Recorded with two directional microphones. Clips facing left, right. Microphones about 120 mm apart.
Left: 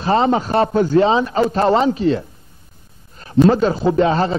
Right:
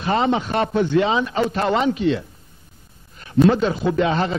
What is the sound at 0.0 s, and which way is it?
Speech, 35° left (ahead or behind).